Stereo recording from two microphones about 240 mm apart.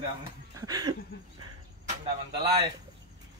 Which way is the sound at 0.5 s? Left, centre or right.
Centre.